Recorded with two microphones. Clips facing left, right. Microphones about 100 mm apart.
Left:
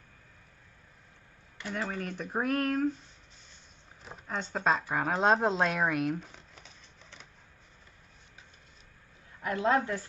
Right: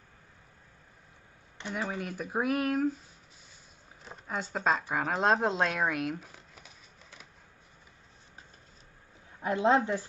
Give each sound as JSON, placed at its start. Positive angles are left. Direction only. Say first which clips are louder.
{"t": 1.6, "sound": "speech", "louder": "even", "side_deg": -10}
{"t": 4.0, "sound": "speech", "louder": "even", "side_deg": 0}
{"t": 9.4, "sound": "speech", "louder": "right 2 dB", "side_deg": -20}